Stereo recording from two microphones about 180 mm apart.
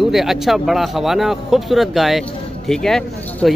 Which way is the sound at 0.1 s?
Centre (ahead or behind).